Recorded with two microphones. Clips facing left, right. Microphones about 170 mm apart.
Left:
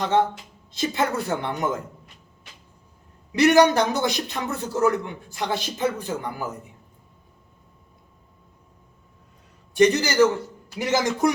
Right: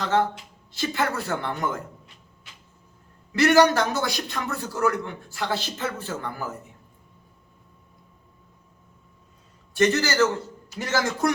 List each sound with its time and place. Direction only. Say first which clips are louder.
0.0 s a man's voice: left 2 dB; 15° left (ahead or behind)
3.3 s a man's voice: left 2 dB; 20° left (ahead or behind)
9.7 s a man's voice: left 3 dB; 15° left (ahead or behind)